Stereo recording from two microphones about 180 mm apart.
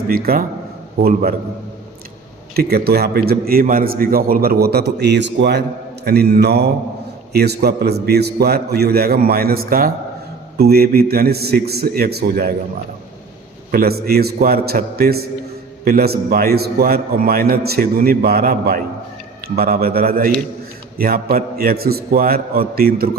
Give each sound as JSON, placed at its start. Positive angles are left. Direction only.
{"t": 0.1, "sound": "a man's voice", "side_deg": -55}
{"t": 2.6, "sound": "a man's voice", "side_deg": -60}
{"t": 13.7, "sound": "a man's voice", "side_deg": -60}